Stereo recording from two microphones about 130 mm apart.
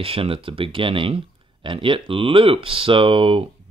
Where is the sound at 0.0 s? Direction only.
45° right (ahead or behind).